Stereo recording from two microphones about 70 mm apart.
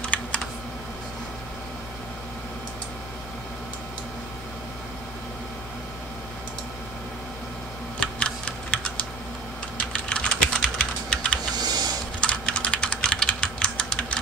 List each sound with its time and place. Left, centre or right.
0.0 s computer keyboard: centre
8.0 s typing: centre
10.0 s typing: centre
11.5 s a sound: right
12.2 s typing: centre